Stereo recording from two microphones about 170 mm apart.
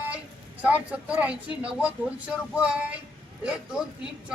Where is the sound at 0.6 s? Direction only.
10° right (ahead or behind).